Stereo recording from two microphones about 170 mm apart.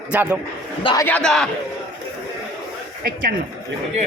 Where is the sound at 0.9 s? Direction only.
10° left (ahead or behind).